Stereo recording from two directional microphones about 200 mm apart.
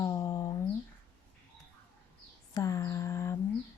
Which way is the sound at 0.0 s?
20° left (ahead or behind).